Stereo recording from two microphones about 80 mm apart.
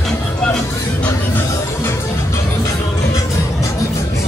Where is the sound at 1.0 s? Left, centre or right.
Left.